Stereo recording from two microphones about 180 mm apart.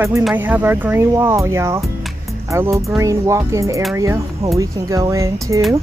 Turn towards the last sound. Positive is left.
turn(degrees=-20)  # may be behind; listen again after turning